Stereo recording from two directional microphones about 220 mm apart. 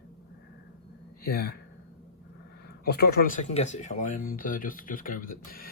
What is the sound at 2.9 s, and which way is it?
Speech, 45° left (ahead or behind).